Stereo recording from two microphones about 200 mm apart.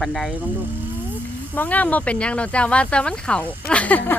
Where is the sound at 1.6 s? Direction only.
10° left (ahead or behind).